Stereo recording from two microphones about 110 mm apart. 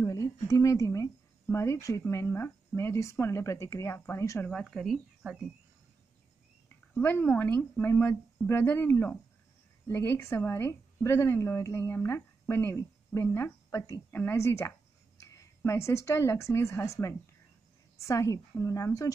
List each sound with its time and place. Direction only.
0.0 s speech: 30° left (ahead or behind)
4.5 s speech: 5° left (ahead or behind)
6.9 s a woman's voice: 15° left (ahead or behind)
17.9 s a woman's voice: 30° left (ahead or behind)